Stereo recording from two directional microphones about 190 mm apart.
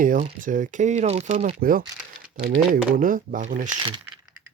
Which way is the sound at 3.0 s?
45° right (ahead or behind).